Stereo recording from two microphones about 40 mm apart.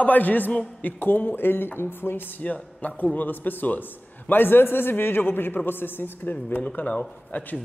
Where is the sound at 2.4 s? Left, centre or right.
Left.